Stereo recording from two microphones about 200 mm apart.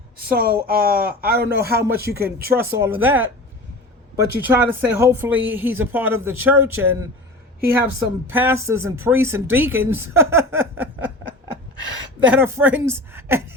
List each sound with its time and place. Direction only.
0.3 s speech: 50° right (ahead or behind)
2.5 s speech: 10° right (ahead or behind)
12.3 s speech: 10° right (ahead or behind)